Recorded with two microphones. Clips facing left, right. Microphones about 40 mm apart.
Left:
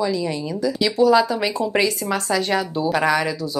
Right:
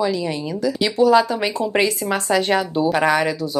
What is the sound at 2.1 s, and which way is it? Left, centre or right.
Speech, right.